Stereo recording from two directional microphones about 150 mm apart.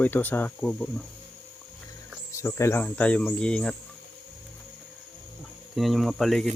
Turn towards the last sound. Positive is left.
turn(degrees=0)  # may be behind; listen again after turning